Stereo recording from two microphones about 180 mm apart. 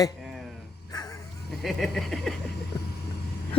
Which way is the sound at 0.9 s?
20° left (ahead or behind).